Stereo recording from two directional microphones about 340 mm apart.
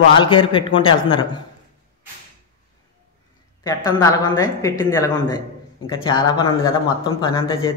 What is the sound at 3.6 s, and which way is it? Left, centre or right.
A man's voice, centre.